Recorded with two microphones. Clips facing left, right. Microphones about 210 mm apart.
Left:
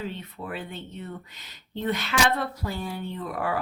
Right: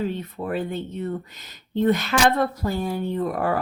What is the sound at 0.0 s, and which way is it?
A woman's voice, 45° right (ahead or behind).